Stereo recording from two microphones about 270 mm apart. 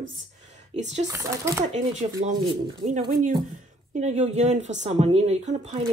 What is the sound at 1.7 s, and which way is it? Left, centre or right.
A woman's voice, right.